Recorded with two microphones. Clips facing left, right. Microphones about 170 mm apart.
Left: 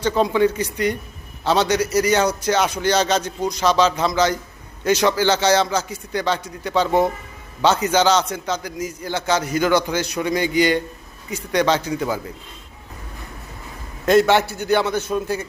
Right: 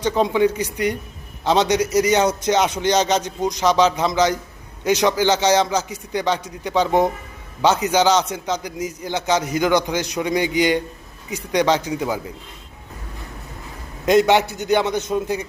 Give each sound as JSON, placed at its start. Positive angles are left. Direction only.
{"t": 0.0, "sound": "a man's voice", "side_deg": -15}
{"t": 14.0, "sound": "a man's voice", "side_deg": -15}